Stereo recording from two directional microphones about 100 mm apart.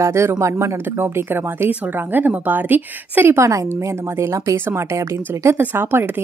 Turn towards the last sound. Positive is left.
turn(degrees=-20)  # may be behind; listen again after turning